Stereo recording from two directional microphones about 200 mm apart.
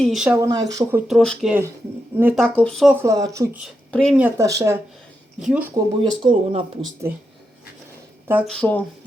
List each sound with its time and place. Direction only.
0.0 s speech: centre (ahead or behind)
0.4 s speech: 15° right (ahead or behind)
1.0 s speech: centre (ahead or behind)
2.4 s speech: centre (ahead or behind)
3.0 s speech: 15° right (ahead or behind)
3.6 s a woman's voice: centre (ahead or behind)
4.2 s speech: 15° right (ahead or behind)
6.0 s speech: 25° right (ahead or behind)
8.4 s speech: 5° left (ahead or behind)